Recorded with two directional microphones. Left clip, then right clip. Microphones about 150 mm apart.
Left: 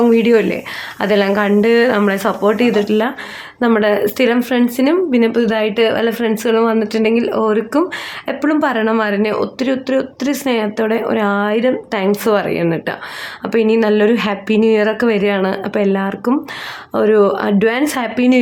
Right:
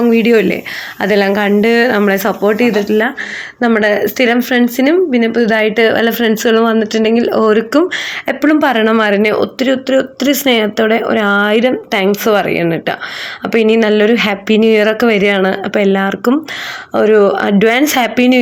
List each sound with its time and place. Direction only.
0.1 s speech: 15° right (ahead or behind)
5.1 s speech: 5° left (ahead or behind)
5.4 s speech: 15° right (ahead or behind)